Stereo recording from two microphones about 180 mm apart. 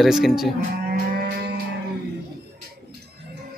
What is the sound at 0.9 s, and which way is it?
Music, 60° right (ahead or behind).